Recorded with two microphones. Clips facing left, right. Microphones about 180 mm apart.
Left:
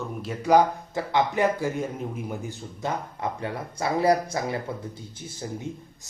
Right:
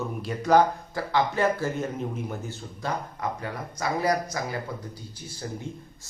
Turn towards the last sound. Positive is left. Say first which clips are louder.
# left 2 dB
turn(degrees=15)  # may be behind; listen again after turning